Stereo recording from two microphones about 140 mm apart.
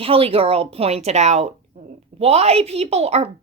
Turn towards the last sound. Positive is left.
turn(degrees=-50)  # may be behind; listen again after turning